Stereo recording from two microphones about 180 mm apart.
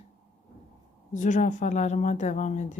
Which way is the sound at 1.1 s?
45° left (ahead or behind).